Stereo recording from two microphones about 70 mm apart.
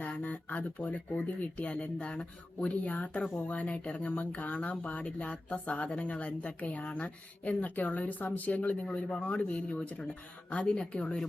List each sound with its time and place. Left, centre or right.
0.0 s speech: left